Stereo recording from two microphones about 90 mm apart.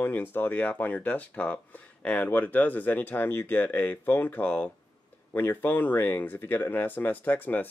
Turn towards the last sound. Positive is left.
turn(degrees=20)  # may be behind; listen again after turning